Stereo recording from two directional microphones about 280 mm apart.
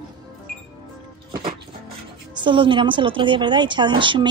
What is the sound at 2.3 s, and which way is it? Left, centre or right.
A woman's voice, centre.